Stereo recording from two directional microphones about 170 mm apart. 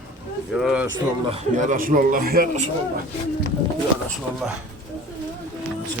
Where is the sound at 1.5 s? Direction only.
50° right (ahead or behind).